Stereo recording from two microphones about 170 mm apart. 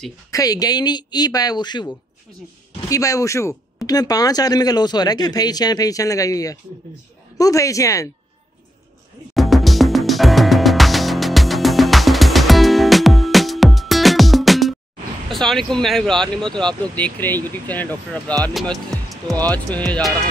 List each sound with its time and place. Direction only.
0.3 s speech: 20° left (ahead or behind)
2.9 s speech: 20° left (ahead or behind)
9.3 s music: centre (ahead or behind)
15.2 s speech: centre (ahead or behind)
18.5 s speech: centre (ahead or behind)